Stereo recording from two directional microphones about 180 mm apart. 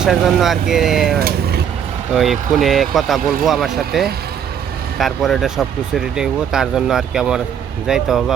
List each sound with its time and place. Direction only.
0.0 s speech: centre (ahead or behind)
1.2 s vehicle: 60° right (ahead or behind)
2.1 s speech: centre (ahead or behind)